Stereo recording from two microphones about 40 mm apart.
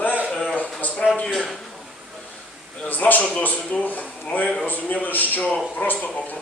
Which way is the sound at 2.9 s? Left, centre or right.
Left.